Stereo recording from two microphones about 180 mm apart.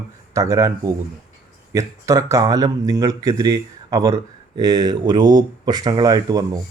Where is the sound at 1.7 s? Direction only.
20° right (ahead or behind).